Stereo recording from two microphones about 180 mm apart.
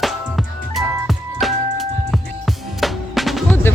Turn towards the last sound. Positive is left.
turn(degrees=0)  # may be behind; listen again after turning